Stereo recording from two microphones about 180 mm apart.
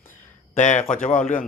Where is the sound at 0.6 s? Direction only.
40° left (ahead or behind).